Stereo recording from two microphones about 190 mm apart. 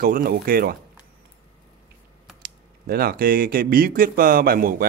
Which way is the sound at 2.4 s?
50° right (ahead or behind).